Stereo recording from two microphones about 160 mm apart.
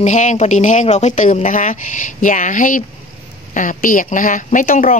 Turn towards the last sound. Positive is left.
turn(degrees=60)  # may be behind; listen again after turning